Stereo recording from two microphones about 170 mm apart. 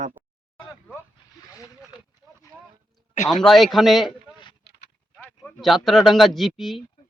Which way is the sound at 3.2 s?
Centre (ahead or behind).